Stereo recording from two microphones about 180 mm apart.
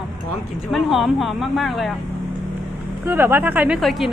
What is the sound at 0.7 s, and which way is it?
Speech, centre (ahead or behind).